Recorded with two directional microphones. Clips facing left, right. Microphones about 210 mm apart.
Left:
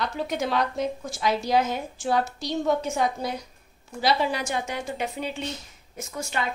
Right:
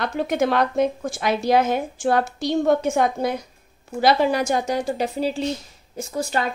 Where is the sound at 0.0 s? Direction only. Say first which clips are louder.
Right 6 dB; 55° right (ahead or behind); by 6.4 s 30° right (ahead or behind).